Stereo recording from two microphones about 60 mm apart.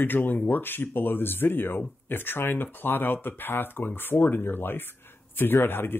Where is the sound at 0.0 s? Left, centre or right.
Left.